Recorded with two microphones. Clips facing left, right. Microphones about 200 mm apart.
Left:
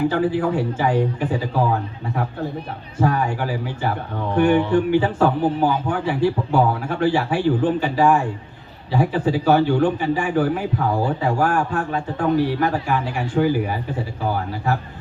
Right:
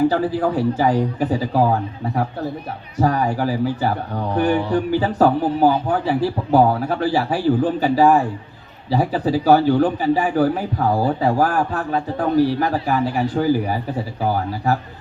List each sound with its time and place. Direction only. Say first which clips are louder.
0.3 s a man's voice: right 2 dB; 35° right (ahead or behind)
3.0 s a man's voice: right 2 dB; 35° right (ahead or behind)